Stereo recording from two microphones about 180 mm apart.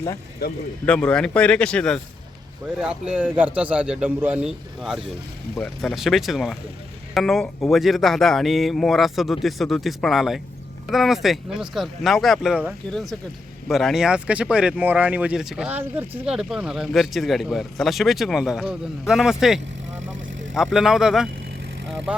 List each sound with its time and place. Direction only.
0.4 s speech: 60° left (ahead or behind)
0.9 s a man's voice: 5° left (ahead or behind)